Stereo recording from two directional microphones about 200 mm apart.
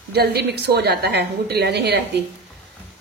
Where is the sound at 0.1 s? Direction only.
55° right (ahead or behind).